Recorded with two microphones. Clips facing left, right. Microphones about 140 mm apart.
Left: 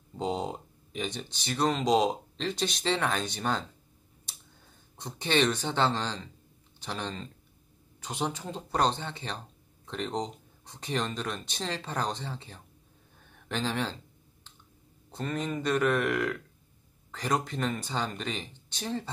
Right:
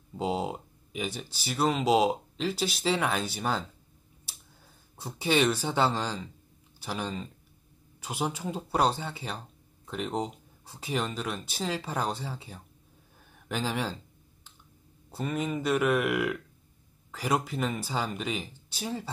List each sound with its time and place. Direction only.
0.1 s speech: 5° right (ahead or behind)
4.9 s speech: 5° right (ahead or behind)
15.0 s speech: 10° right (ahead or behind)